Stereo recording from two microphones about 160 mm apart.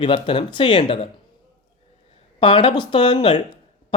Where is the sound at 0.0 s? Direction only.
30° left (ahead or behind).